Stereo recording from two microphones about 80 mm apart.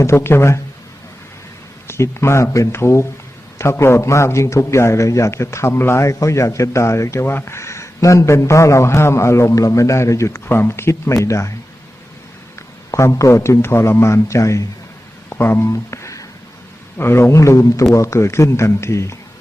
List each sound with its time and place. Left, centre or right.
0.0 s a man's voice: left
1.9 s a man's voice: left
12.9 s a man's voice: left
15.3 s speech: left
15.7 s a sound: left
17.0 s a man's voice: left